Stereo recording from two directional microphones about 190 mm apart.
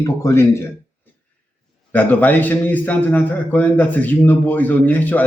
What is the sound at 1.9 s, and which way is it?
A man's voice, 10° left (ahead or behind).